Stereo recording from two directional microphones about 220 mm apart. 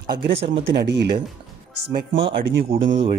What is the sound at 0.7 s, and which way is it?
Speech, 50° right (ahead or behind).